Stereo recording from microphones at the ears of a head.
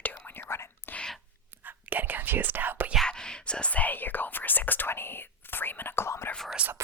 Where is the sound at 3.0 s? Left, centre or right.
Centre.